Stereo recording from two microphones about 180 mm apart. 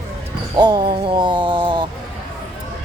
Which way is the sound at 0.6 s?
25° right (ahead or behind).